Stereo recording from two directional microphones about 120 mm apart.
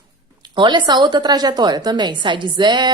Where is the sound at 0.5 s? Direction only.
40° right (ahead or behind).